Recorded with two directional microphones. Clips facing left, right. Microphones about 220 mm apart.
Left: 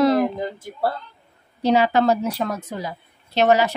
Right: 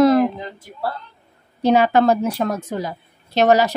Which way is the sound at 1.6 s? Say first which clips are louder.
Right 3 dB; 55° right (ahead or behind).